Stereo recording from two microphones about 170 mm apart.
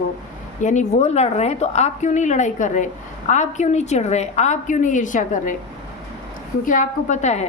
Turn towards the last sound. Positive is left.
turn(degrees=40)  # may be behind; listen again after turning